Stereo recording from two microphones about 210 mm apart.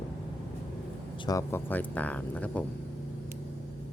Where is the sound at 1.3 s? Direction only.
15° left (ahead or behind).